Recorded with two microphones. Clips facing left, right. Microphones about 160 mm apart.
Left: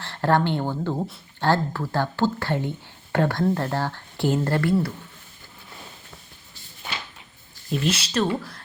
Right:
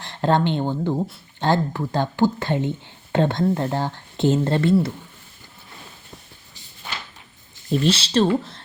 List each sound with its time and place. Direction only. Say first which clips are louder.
0.0 s speech: right 1 dB; 20° right (ahead or behind)
7.7 s speech: right 5 dB; 30° right (ahead or behind)